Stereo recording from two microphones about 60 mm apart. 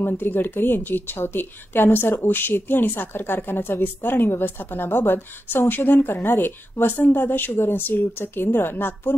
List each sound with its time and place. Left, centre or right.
0.0 s a woman's voice: left